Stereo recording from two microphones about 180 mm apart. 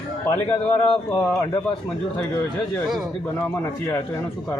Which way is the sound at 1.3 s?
15° left (ahead or behind).